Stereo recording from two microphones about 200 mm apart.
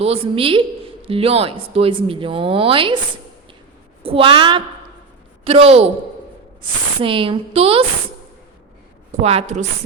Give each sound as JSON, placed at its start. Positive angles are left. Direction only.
{"t": 0.0, "sound": "speech", "side_deg": -30}
{"t": 4.0, "sound": "speech", "side_deg": -25}
{"t": 7.0, "sound": "speech", "side_deg": -25}
{"t": 9.2, "sound": "speech", "side_deg": -35}